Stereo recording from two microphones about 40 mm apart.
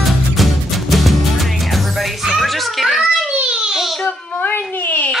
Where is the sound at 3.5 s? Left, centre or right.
Centre.